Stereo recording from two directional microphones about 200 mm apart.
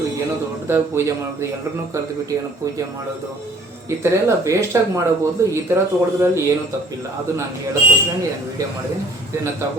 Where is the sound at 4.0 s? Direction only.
15° right (ahead or behind).